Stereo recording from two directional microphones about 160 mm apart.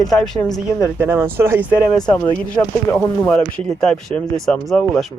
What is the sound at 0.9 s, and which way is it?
Speech, 10° right (ahead or behind).